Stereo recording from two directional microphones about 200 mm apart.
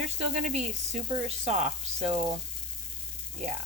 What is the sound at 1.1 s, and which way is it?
Speech, 35° right (ahead or behind).